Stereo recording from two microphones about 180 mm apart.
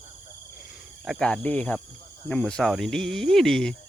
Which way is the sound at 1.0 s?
Centre (ahead or behind).